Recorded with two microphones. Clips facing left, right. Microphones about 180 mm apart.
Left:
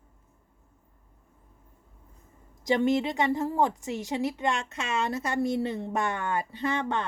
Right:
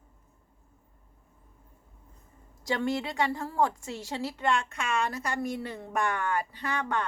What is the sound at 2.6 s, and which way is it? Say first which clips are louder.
A woman's voice: left 5 dB; 20° left (ahead or behind).